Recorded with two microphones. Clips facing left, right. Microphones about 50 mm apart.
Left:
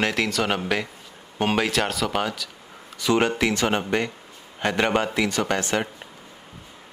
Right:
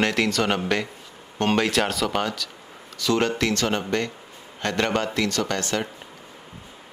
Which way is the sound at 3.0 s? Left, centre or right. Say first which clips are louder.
Left 1 dB; centre.